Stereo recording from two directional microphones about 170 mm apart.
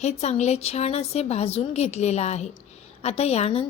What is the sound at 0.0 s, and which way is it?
A woman's voice, 40° left (ahead or behind).